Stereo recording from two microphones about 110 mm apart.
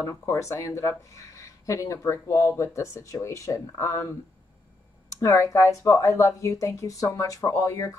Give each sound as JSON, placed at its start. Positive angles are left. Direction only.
{"t": 0.0, "sound": "speech", "side_deg": 30}
{"t": 5.2, "sound": "speech", "side_deg": 25}